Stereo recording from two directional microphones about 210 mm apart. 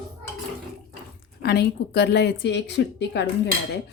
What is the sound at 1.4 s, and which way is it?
A woman's voice, 50° left (ahead or behind).